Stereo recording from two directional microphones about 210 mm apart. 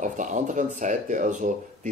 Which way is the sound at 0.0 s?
35° right (ahead or behind).